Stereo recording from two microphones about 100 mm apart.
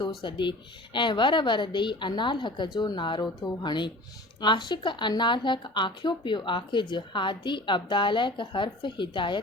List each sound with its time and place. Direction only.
0.2 s a woman's voice: 55° left (ahead or behind)